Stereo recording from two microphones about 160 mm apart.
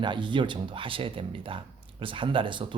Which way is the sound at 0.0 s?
30° right (ahead or behind).